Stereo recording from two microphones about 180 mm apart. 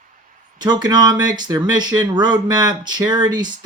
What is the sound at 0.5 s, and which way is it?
Speech, 25° right (ahead or behind).